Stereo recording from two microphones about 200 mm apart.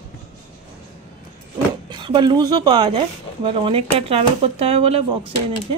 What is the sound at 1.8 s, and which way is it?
A woman's voice, 25° right (ahead or behind).